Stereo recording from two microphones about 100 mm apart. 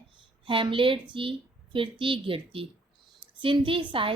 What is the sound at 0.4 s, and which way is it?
A woman's voice, 60° right (ahead or behind).